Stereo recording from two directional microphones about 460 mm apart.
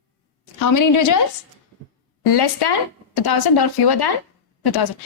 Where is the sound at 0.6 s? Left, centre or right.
Left.